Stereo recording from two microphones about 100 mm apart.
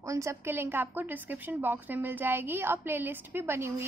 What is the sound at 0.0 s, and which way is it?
A woman's voice, 30° right (ahead or behind).